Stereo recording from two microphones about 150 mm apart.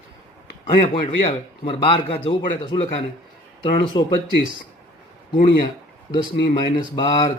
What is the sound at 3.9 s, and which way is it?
Speech, 30° left (ahead or behind).